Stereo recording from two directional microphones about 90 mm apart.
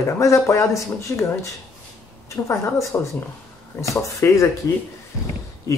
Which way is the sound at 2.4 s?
35° left (ahead or behind).